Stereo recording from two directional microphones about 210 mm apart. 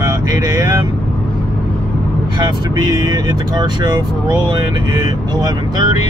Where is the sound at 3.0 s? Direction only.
20° right (ahead or behind).